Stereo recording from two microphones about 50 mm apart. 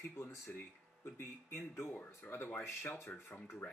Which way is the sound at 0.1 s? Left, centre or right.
Left.